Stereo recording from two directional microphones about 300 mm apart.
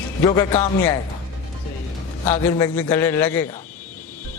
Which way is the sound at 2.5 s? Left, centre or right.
Centre.